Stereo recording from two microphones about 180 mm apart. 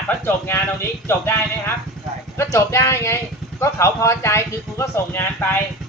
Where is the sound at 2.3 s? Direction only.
15° left (ahead or behind).